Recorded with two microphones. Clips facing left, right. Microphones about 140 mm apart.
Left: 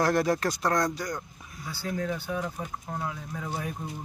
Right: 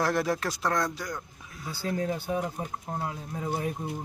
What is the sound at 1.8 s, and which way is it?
Speech, 30° right (ahead or behind).